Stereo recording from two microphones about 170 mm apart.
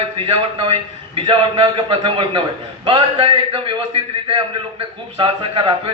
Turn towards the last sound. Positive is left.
turn(degrees=-30)  # may be behind; listen again after turning